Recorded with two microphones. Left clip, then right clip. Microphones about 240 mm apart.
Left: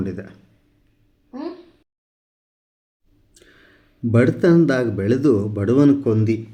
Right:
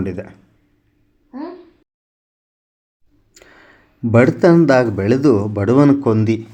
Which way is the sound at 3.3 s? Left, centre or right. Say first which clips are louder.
Right 6 dB; centre.